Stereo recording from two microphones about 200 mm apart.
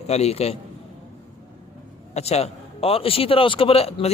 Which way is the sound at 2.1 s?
30° left (ahead or behind).